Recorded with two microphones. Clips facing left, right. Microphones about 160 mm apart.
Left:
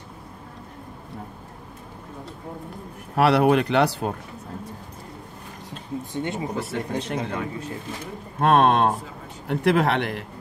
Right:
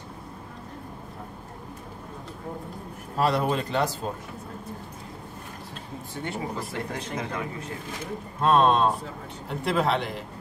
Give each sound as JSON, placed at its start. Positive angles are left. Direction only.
{"t": 3.2, "sound": "speech", "side_deg": 70}
{"t": 6.1, "sound": "speech", "side_deg": 20}
{"t": 6.6, "sound": "speech", "side_deg": 75}
{"t": 8.4, "sound": "speech", "side_deg": 65}